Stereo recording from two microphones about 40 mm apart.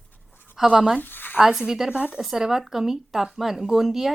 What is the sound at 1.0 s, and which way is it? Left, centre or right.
Speech, left.